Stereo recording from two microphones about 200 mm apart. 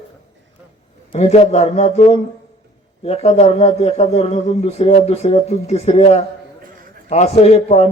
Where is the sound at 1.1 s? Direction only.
35° left (ahead or behind).